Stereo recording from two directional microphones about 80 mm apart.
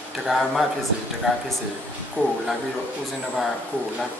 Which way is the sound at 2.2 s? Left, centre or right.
Centre.